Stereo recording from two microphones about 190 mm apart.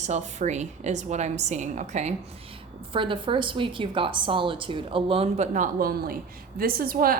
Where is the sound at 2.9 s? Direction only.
25° right (ahead or behind).